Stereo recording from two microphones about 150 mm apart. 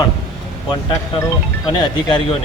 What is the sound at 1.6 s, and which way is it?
Speech, 30° left (ahead or behind).